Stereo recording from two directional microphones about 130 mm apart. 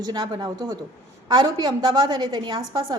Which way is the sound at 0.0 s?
35° right (ahead or behind).